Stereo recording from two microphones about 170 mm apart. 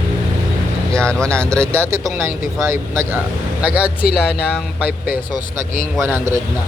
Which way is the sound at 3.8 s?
65° left (ahead or behind).